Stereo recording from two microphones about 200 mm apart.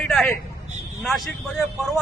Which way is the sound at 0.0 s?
Centre (ahead or behind).